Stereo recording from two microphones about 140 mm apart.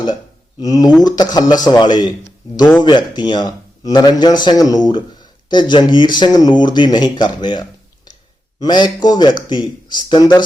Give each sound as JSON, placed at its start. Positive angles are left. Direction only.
{"t": 0.6, "sound": "a man's voice", "side_deg": 25}